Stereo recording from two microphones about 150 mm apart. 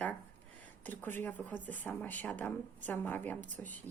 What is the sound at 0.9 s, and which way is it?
Speech, 10° left (ahead or behind).